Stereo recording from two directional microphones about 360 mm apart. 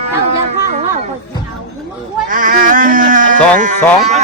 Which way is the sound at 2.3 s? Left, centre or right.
Right.